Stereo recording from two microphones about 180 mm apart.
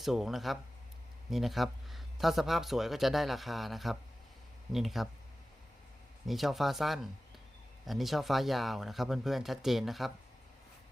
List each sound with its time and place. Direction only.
0.0 s speech: centre (ahead or behind)
6.2 s speech: centre (ahead or behind)